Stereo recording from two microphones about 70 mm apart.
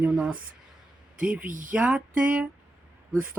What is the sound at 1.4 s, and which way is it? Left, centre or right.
Speech, centre.